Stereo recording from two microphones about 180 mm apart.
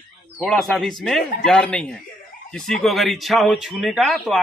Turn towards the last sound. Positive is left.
turn(degrees=0)  # may be behind; listen again after turning